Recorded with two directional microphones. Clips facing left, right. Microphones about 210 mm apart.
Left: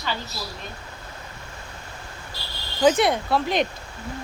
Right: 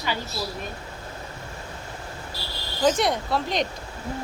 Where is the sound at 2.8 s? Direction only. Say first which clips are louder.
Left 3 dB; 5° left (ahead or behind).